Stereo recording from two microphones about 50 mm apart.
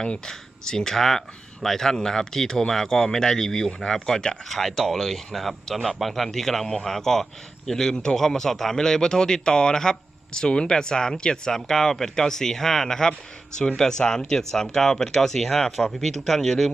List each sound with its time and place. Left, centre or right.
0.0 s a man's voice: centre